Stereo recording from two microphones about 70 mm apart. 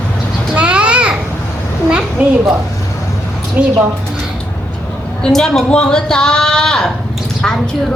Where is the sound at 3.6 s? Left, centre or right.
Right.